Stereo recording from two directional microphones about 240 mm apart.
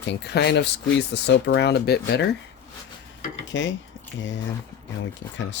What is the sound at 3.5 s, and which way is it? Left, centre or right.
Speech, left.